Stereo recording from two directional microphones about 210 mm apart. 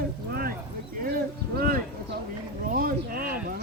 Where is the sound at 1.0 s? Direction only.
45° right (ahead or behind).